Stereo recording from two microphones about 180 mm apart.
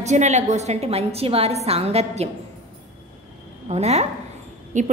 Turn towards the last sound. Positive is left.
turn(degrees=-45)  # may be behind; listen again after turning